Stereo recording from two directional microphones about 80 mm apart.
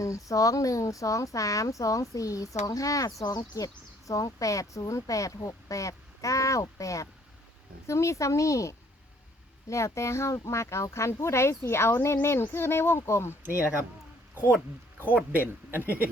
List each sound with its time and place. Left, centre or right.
0.0 s speech: left
14.5 s speech: centre